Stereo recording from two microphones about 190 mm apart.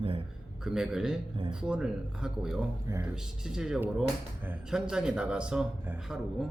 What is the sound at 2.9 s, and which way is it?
Speech, 15° right (ahead or behind).